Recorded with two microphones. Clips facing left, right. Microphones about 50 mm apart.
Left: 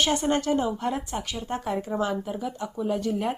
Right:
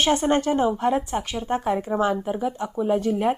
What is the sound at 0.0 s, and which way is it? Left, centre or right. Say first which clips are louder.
Speech: right 4 dB; right.